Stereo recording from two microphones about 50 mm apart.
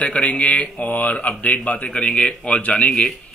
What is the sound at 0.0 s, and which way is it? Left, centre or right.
A man's voice, left.